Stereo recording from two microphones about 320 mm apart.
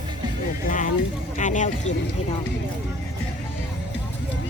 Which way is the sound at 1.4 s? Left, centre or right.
Left.